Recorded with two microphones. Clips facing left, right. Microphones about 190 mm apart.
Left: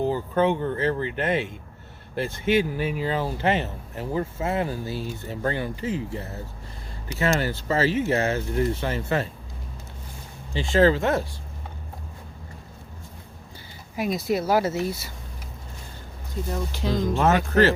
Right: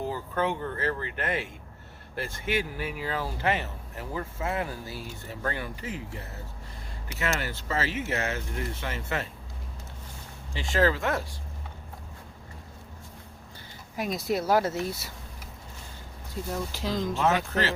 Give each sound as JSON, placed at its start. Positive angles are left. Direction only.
{"t": 0.0, "sound": "speech", "side_deg": 25}
{"t": 10.5, "sound": "speech", "side_deg": 25}
{"t": 13.9, "sound": "speech", "side_deg": 5}
{"t": 16.3, "sound": "speech", "side_deg": 0}
{"t": 17.0, "sound": "speech", "side_deg": 50}